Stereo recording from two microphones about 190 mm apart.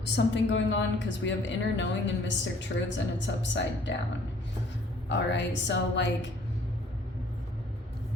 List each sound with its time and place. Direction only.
0.0 s a woman's voice: 70° left (ahead or behind)
5.0 s a woman's voice: 70° left (ahead or behind)